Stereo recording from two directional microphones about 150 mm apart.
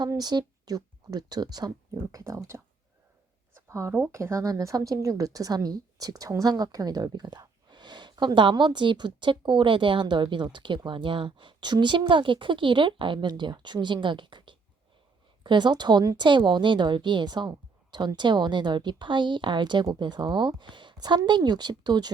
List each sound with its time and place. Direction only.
0.0 s speech: 25° right (ahead or behind)